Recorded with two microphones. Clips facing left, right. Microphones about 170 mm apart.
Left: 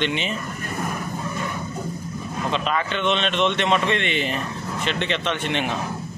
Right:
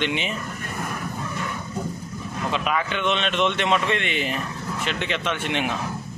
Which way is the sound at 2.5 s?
10° right (ahead or behind).